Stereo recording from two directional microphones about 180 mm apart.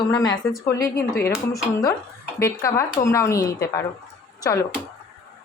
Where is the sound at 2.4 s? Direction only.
15° left (ahead or behind).